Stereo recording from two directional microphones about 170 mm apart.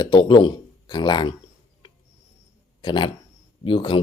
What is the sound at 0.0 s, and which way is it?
Speech, 25° left (ahead or behind).